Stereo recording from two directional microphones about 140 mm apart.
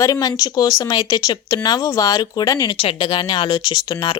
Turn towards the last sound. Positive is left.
turn(degrees=30)  # may be behind; listen again after turning